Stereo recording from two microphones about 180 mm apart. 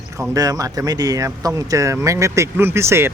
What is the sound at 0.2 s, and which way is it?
Speech, 20° right (ahead or behind).